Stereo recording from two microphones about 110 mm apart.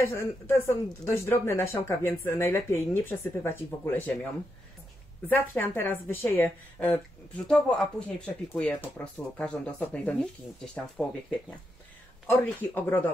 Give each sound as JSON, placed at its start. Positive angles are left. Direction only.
{"t": 0.0, "sound": "speech", "side_deg": 25}
{"t": 5.5, "sound": "speech", "side_deg": 20}
{"t": 7.3, "sound": "speech", "side_deg": 5}